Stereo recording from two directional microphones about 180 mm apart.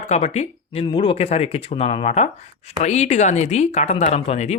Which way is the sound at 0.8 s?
30° left (ahead or behind).